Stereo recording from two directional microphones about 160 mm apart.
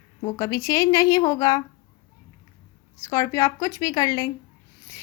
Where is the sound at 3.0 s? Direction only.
20° left (ahead or behind).